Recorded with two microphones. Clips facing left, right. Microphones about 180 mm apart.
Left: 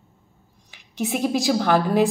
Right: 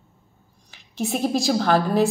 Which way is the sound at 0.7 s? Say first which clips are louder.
Even; 15° left (ahead or behind).